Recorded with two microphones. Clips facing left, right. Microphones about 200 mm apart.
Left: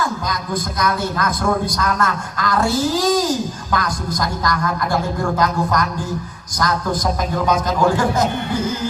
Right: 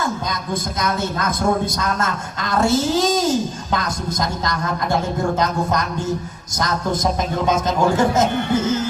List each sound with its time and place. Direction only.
0.0 s a man's voice: 25° right (ahead or behind)